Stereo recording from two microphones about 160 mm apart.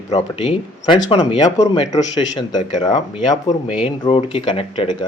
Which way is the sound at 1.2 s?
25° left (ahead or behind).